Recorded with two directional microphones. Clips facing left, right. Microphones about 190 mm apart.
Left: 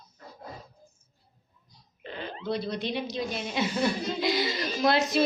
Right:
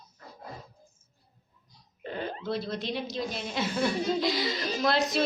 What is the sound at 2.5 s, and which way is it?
A woman's voice, centre (ahead or behind).